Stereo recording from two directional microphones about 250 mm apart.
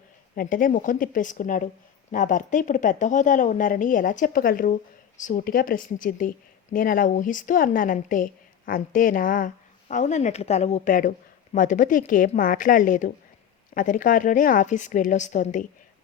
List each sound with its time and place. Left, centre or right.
0.3 s a woman's voice: left